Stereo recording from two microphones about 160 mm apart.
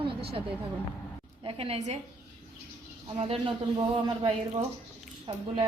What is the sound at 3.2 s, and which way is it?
A woman's voice, 40° right (ahead or behind).